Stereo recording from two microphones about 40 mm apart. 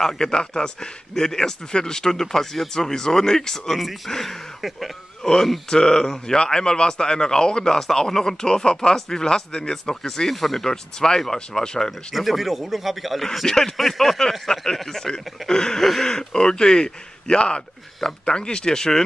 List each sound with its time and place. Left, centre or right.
0.0 s speech: centre
5.2 s speech: centre
10.3 s a man's voice: centre
10.7 s speech: centre
12.1 s a man's voice: centre
13.5 s speech: centre
13.7 s a man's voice: centre
15.8 s a man's voice: centre
16.1 s speech: centre